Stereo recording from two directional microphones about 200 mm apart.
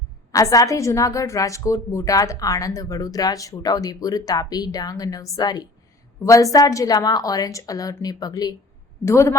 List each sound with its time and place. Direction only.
0.3 s a woman's voice: 15° left (ahead or behind)